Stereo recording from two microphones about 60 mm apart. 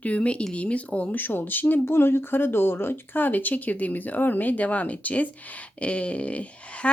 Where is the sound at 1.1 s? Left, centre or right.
Left.